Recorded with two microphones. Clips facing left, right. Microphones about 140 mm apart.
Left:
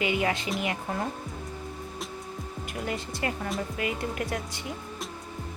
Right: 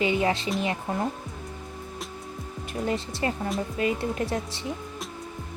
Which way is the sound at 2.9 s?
25° right (ahead or behind).